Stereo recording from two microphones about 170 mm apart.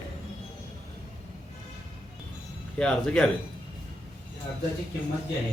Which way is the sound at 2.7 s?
5° left (ahead or behind).